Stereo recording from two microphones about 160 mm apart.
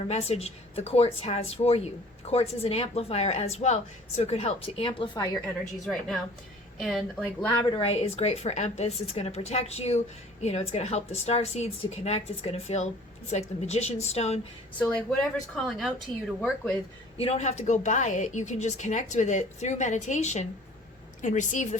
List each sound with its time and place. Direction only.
0.1 s a woman's voice: 40° left (ahead or behind)
5.8 s speech: centre (ahead or behind)
7.4 s a woman's voice: 25° left (ahead or behind); by 14.4 s 40° left (ahead or behind)
14.8 s speech: 5° left (ahead or behind)
17.2 s a woman's voice: 40° left (ahead or behind)